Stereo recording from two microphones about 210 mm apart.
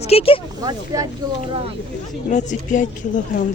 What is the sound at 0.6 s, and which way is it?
Speech, 20° right (ahead or behind).